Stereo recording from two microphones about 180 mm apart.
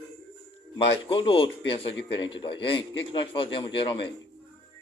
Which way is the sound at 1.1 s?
30° left (ahead or behind).